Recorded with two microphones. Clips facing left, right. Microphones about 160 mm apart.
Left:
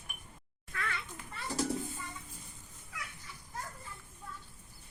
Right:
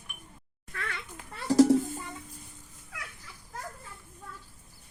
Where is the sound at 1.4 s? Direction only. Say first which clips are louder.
Right 14 dB; 85° right.